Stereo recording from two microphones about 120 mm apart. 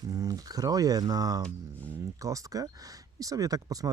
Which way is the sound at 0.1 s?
30° right (ahead or behind).